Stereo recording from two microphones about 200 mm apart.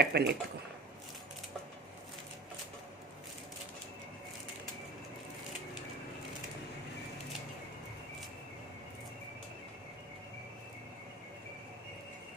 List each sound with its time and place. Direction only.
0.0 s speech: 55° right (ahead or behind)